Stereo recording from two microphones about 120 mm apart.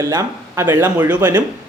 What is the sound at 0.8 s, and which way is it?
Speech, 15° right (ahead or behind).